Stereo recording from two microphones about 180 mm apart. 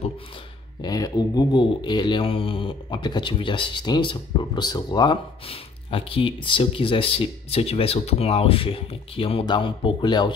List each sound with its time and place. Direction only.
0.8 s speech: 20° left (ahead or behind)